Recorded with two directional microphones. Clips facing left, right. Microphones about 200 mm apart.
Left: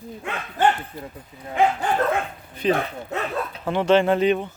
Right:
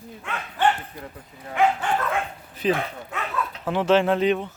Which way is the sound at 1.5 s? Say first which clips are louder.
Left 1 dB; 35° left (ahead or behind).